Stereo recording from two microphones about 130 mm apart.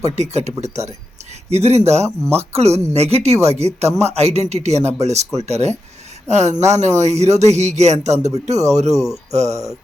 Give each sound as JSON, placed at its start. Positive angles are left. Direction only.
{"t": 0.0, "sound": "speech", "side_deg": -60}
{"t": 2.0, "sound": "speech", "side_deg": -20}
{"t": 2.5, "sound": "speech", "side_deg": -55}